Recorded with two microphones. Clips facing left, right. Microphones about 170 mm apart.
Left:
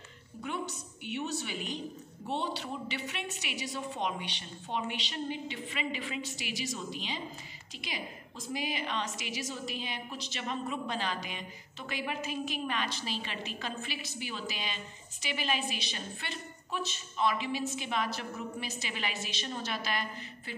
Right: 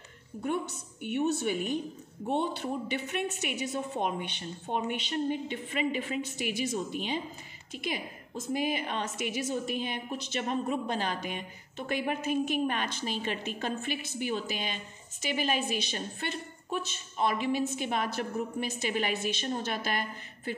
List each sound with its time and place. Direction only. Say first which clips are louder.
0.4 s a woman's voice: right 5 dB; 50° right (ahead or behind)